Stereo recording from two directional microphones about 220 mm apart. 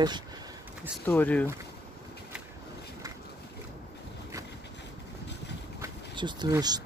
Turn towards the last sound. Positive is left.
turn(degrees=-20)  # may be behind; listen again after turning